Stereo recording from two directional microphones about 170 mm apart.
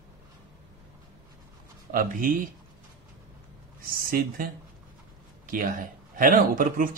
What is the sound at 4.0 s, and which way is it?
Speech, 55° right (ahead or behind).